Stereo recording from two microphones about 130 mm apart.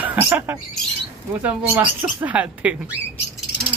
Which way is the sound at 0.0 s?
15° right (ahead or behind).